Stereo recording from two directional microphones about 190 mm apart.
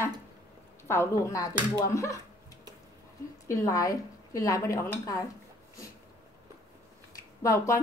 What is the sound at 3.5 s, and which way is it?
A woman's voice, 20° left (ahead or behind).